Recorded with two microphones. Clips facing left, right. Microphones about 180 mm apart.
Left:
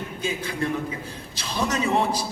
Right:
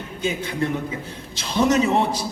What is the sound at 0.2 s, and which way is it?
A man's voice, 25° right (ahead or behind).